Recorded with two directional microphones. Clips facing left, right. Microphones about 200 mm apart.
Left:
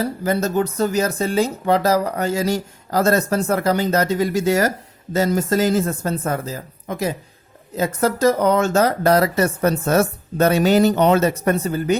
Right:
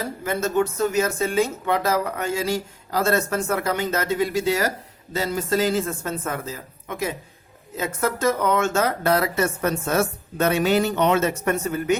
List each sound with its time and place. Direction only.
0.0 s speech: 35° left (ahead or behind)